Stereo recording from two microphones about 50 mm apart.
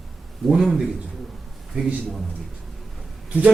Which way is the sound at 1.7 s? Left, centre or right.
Right.